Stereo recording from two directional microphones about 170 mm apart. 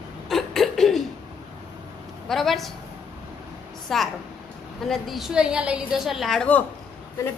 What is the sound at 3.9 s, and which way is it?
A woman's voice, centre (ahead or behind).